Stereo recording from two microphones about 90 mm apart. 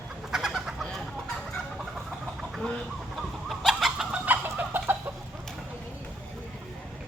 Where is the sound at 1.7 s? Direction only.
5° right (ahead or behind).